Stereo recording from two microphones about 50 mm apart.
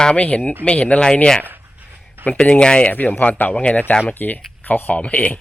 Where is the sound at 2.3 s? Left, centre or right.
Centre.